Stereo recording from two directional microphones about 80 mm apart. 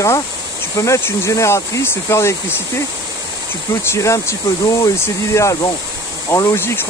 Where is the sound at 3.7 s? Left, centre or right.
Left.